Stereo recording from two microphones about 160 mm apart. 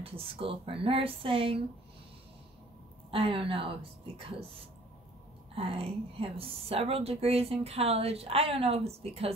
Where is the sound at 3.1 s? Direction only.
35° right (ahead or behind).